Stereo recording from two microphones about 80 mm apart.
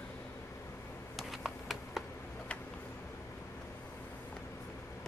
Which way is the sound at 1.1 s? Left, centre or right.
Centre.